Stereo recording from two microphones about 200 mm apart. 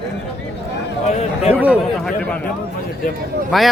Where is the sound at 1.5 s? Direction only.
5° right (ahead or behind).